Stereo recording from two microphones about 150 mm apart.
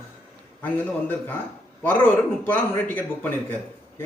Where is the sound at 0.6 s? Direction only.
15° left (ahead or behind).